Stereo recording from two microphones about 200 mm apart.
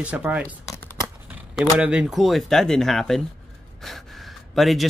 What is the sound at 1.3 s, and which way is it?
Speech, 5° right (ahead or behind).